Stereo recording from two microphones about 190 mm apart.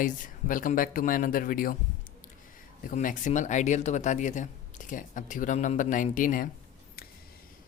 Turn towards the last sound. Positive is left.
turn(degrees=55)  # may be behind; listen again after turning